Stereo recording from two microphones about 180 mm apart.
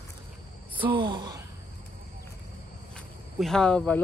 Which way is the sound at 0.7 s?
30° right (ahead or behind).